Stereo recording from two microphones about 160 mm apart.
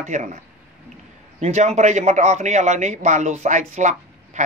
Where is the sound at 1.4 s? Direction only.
45° right (ahead or behind).